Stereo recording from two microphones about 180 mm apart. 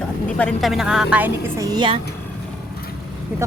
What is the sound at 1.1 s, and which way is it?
Speech, 15° right (ahead or behind).